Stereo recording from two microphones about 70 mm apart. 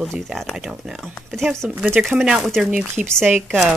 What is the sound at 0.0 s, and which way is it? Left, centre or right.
Speech, centre.